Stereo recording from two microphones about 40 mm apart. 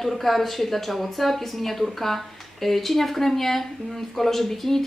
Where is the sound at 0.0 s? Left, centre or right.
Centre.